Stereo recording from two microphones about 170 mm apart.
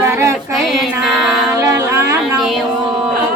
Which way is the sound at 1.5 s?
15° right (ahead or behind).